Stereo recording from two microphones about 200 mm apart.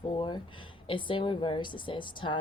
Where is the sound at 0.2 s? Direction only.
25° left (ahead or behind).